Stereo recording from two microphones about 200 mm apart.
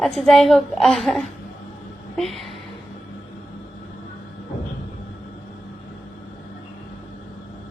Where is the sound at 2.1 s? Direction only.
Centre (ahead or behind).